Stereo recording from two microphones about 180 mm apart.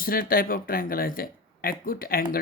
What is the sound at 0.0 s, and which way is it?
Speech, 55° left (ahead or behind).